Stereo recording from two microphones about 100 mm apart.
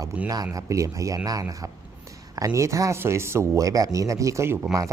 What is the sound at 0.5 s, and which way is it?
Speech, 35° right (ahead or behind).